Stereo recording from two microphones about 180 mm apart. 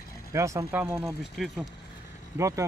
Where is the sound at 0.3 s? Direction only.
15° right (ahead or behind).